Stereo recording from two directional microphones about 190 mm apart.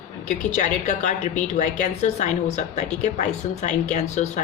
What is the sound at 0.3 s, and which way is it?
A woman's voice, 40° left (ahead or behind).